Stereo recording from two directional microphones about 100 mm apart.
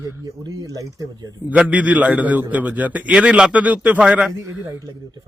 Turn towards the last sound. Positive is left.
turn(degrees=-5)  # may be behind; listen again after turning